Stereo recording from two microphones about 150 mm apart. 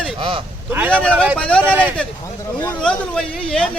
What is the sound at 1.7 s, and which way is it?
Speech, 10° right (ahead or behind).